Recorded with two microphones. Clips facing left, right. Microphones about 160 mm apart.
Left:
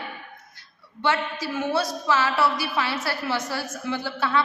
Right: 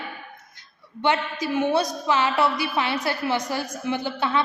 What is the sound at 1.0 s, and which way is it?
A woman's voice, 20° right (ahead or behind).